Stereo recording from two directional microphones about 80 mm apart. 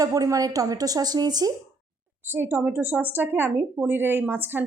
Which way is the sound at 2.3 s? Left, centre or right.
Right.